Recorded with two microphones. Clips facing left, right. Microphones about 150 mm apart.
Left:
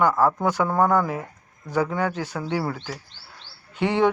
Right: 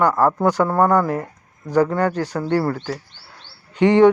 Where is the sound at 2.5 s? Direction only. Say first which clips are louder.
Right 7 dB; 5° left (ahead or behind).